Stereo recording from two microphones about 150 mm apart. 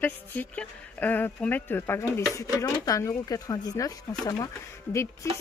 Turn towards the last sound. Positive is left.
turn(degrees=20)  # may be behind; listen again after turning